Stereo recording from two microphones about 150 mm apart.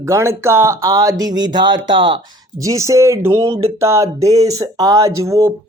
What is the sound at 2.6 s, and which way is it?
Speech, 20° right (ahead or behind).